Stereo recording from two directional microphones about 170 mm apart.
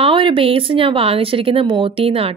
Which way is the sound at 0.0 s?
30° right (ahead or behind).